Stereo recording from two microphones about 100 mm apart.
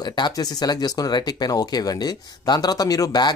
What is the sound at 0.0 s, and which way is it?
Speech, 45° left (ahead or behind).